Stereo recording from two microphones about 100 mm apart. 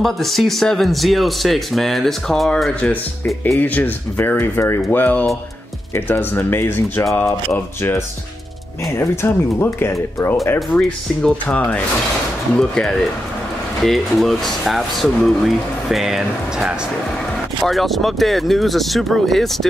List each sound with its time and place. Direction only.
0.0 s speech: centre (ahead or behind)
3.5 s speech: 20° left (ahead or behind)
10.8 s speech: 10° left (ahead or behind)